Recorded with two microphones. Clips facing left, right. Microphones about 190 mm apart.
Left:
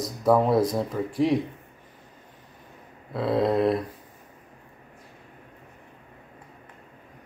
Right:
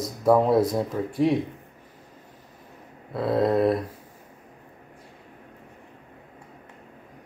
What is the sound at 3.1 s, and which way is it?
Speech, centre (ahead or behind).